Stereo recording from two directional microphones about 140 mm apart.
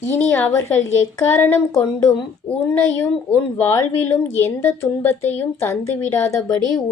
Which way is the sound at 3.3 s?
15° left (ahead or behind).